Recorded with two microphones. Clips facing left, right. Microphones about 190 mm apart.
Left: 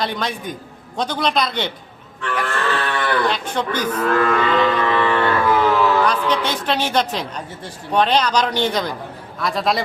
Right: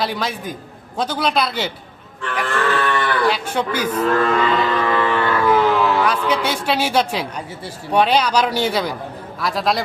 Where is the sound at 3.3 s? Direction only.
10° right (ahead or behind).